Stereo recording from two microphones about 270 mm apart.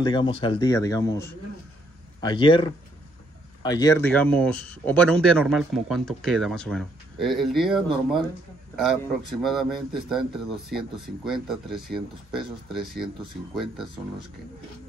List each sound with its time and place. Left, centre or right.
0.0 s a man's voice: centre